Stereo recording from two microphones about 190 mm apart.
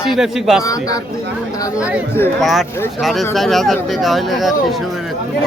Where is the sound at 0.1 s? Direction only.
Centre (ahead or behind).